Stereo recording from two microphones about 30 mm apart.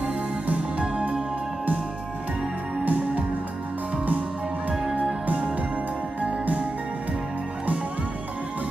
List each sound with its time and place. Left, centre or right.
0.7 s music: right
2.8 s music: right
6.2 s music: right